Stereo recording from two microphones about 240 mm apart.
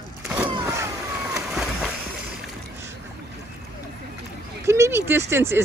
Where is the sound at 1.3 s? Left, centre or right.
Centre.